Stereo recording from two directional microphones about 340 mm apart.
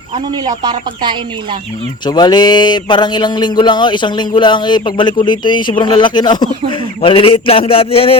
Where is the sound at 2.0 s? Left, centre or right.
Centre.